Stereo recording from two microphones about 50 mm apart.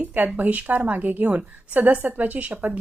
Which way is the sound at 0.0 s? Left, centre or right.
Right.